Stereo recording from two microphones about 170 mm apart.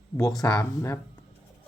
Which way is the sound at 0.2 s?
20° left (ahead or behind).